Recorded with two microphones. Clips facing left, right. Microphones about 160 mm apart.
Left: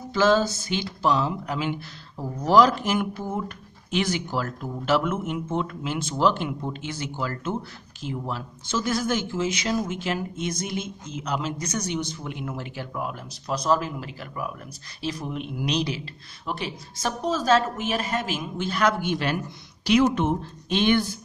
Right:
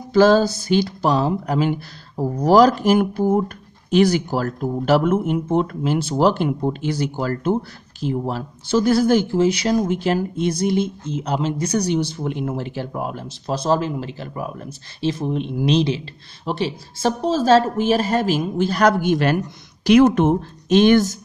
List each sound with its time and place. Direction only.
0.1 s speech: 35° right (ahead or behind)